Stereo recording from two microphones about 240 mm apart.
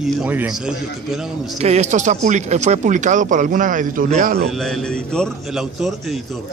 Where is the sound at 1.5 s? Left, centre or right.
Right.